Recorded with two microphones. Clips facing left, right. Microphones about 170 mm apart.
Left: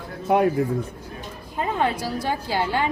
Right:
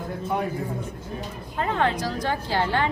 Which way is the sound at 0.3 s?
65° left (ahead or behind).